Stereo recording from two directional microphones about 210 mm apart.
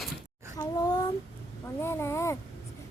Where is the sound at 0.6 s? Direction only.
20° left (ahead or behind).